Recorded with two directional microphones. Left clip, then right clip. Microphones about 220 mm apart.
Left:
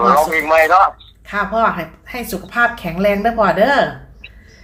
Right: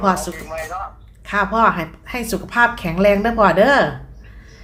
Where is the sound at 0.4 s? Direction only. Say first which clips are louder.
Left 17 dB; 50° left (ahead or behind).